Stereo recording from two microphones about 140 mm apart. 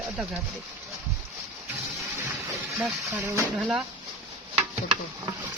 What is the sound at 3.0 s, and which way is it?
Speech, 15° right (ahead or behind).